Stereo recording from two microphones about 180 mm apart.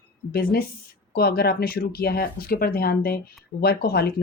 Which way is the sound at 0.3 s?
55° left (ahead or behind).